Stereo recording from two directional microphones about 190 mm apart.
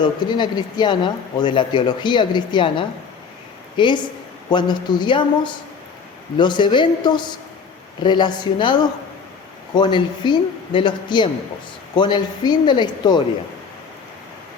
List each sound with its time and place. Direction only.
0.0 s speech: 25° left (ahead or behind)